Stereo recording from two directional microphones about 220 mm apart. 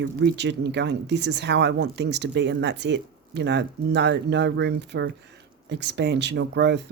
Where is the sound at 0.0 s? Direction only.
50° right (ahead or behind).